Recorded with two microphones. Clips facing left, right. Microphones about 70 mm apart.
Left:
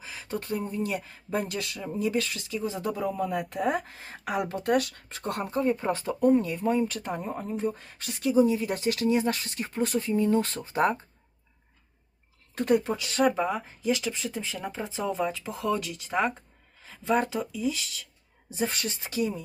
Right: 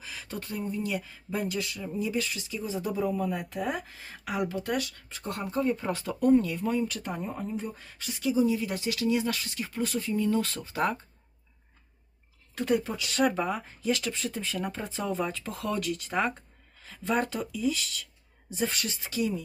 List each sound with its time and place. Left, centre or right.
0.0 s a sound: left
0.9 s speech: left
3.0 s speech: centre
3.5 s speech: left
5.4 s speech: left
6.2 s speech: left
7.2 s speech: left
7.4 s speech: left
12.6 s speech: left
13.3 s speech: centre
18.5 s speech: left